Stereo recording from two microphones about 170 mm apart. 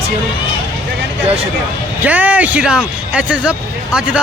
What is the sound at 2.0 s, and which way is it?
A man's voice, 10° right (ahead or behind).